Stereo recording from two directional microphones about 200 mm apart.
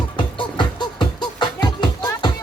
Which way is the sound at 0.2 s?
25° left (ahead or behind).